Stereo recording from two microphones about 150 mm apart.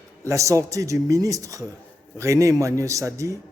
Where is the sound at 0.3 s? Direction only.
20° right (ahead or behind).